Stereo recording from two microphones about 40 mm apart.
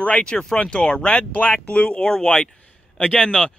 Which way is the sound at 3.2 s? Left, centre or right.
Centre.